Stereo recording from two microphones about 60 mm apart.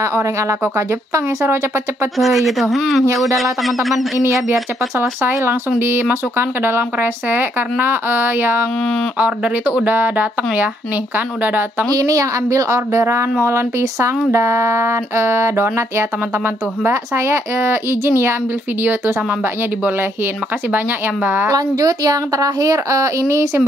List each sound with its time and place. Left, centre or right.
0.0 s speech: right
2.1 s speech: centre
4.5 s speech: right
11.9 s speech: right
16.9 s speech: right
20.7 s speech: right
21.5 s speech: right